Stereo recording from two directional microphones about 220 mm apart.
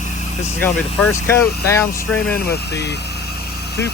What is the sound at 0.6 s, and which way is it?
Speech, 10° left (ahead or behind).